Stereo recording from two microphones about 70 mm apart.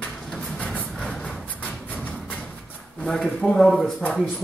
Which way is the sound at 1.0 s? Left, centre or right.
Centre.